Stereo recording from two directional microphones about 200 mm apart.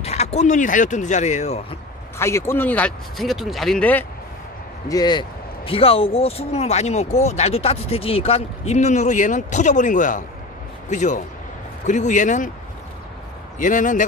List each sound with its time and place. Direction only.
0.0 s speech: 30° left (ahead or behind)
2.1 s speech: 15° left (ahead or behind)
4.8 s speech: 20° left (ahead or behind); by 12.4 s 40° left (ahead or behind)
13.6 s speech: 40° left (ahead or behind)